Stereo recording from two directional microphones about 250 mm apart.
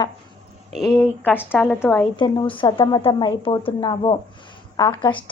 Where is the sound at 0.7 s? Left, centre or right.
Centre.